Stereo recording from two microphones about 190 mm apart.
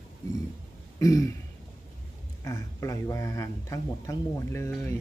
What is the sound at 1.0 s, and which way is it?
Speech, 15° left (ahead or behind).